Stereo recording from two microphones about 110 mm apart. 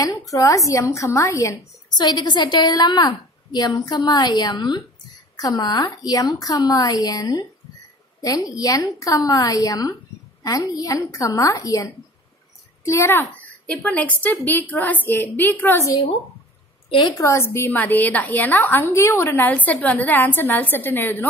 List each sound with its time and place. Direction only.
0.0 s a child's voice: 30° left (ahead or behind)
16.9 s a woman's voice: 35° left (ahead or behind); by 21.3 s 20° left (ahead or behind)